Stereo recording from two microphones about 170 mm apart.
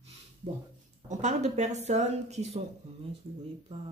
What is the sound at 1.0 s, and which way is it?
Speech, 45° right (ahead or behind).